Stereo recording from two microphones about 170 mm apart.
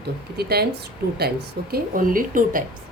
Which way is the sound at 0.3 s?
70° right (ahead or behind).